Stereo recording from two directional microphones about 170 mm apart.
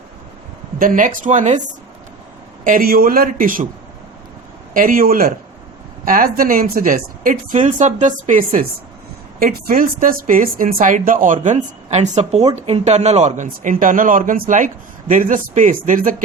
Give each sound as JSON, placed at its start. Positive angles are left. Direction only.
{"t": 0.8, "sound": "speech", "side_deg": -50}
{"t": 2.6, "sound": "a man's voice", "side_deg": -60}
{"t": 4.7, "sound": "a man's voice", "side_deg": -55}